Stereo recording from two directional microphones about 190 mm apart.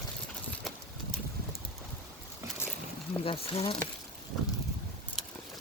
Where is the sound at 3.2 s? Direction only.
30° left (ahead or behind).